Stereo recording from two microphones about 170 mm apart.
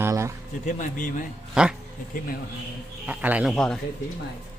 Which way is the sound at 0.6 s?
50° left (ahead or behind).